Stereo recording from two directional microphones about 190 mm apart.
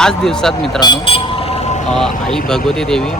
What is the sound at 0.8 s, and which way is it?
Speech, 25° left (ahead or behind).